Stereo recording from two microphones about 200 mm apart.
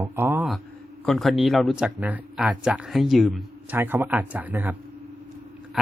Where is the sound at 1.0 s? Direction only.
Centre (ahead or behind).